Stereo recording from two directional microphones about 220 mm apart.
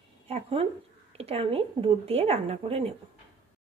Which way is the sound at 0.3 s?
25° right (ahead or behind).